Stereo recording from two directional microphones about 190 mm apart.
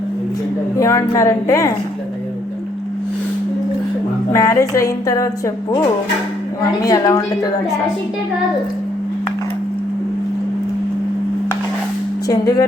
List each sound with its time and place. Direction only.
0.8 s a woman's voice: 15° left (ahead or behind)
4.3 s a woman's voice: 15° left (ahead or behind)
6.6 s a woman's voice: 20° left (ahead or behind)
12.3 s a woman's voice: 15° left (ahead or behind)